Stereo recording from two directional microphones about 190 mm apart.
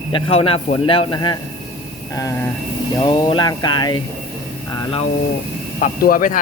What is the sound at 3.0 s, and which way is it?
Speech, 25° left (ahead or behind).